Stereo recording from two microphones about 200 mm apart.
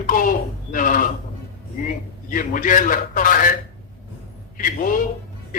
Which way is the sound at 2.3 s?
40° left (ahead or behind).